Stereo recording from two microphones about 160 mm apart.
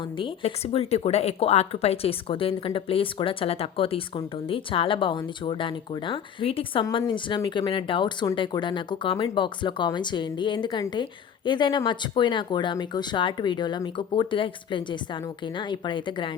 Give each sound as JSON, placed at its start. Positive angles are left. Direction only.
{"t": 0.2, "sound": "speech", "side_deg": 35}